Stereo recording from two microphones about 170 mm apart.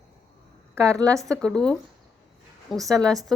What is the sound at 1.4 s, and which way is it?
Speech, 5° left (ahead or behind).